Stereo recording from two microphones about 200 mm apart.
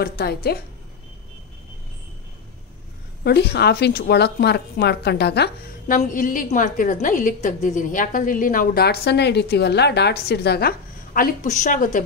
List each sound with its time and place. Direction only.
0.0 s a woman's voice: 50° left (ahead or behind)
3.3 s a woman's voice: 55° left (ahead or behind)
5.9 s a woman's voice: 40° left (ahead or behind)